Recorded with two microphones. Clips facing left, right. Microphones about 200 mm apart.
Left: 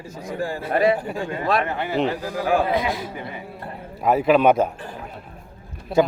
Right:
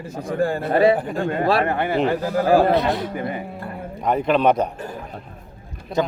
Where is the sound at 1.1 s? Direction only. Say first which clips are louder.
Right 3 dB; 55° right (ahead or behind).